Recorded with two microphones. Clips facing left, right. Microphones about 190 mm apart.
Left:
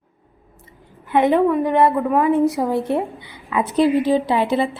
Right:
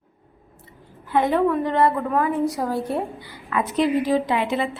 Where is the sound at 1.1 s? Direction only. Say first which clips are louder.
Left 4 dB; 20° left (ahead or behind).